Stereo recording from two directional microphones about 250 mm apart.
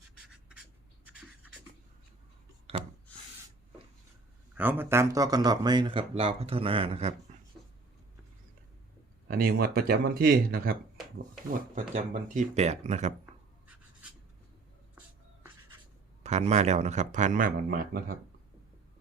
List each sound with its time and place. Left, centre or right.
0.2 s writing: centre
1.0 s a sound: centre
4.5 s speech: centre; by 7.3 s right
9.2 s speech: right
16.2 s speech: right